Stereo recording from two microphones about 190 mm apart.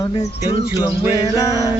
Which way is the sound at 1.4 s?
20° left (ahead or behind).